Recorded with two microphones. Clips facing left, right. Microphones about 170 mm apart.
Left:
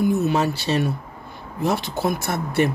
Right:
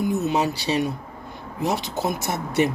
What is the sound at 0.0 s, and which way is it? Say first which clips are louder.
Speech: left 2 dB; 20° right (ahead or behind).